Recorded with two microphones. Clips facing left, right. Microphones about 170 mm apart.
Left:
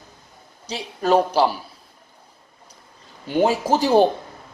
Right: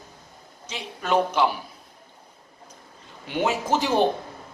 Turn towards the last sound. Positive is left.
turn(degrees=35)  # may be behind; listen again after turning